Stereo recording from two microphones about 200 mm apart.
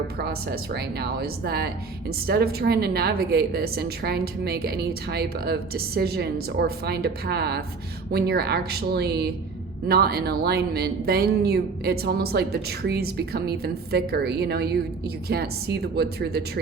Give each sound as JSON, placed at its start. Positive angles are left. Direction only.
{"t": 0.2, "sound": "speech", "side_deg": -50}